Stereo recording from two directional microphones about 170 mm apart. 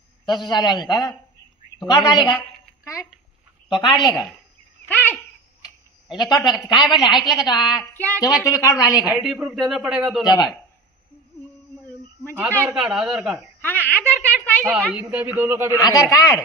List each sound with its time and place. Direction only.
0.2 s a man's voice: 25° left (ahead or behind)
2.3 s a sound: 15° left (ahead or behind)
3.6 s a woman's voice: 25° left (ahead or behind)
4.8 s bird: 10° left (ahead or behind)
6.1 s a man's voice: 25° left (ahead or behind)
7.6 s a woman's voice: 5° right (ahead or behind)
7.9 s speech: 10° left (ahead or behind)
8.5 s a man's voice: 20° left (ahead or behind)
8.9 s a woman's voice: 5° right (ahead or behind)
10.2 s a man's voice: 25° left (ahead or behind)
12.3 s a woman's voice: 10° right (ahead or behind)
13.6 s speech: 10° left (ahead or behind)
14.7 s a man's voice: 10° right (ahead or behind)
16.1 s a man's voice: 20° left (ahead or behind)